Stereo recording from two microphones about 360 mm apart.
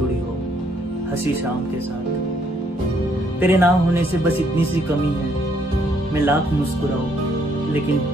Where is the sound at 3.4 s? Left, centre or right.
Centre.